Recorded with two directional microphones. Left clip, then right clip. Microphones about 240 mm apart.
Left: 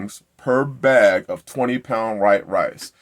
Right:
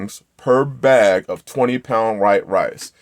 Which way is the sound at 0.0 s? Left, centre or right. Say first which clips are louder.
Right 3 dB; right.